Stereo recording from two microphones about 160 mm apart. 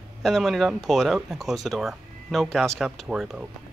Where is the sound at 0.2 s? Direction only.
Centre (ahead or behind).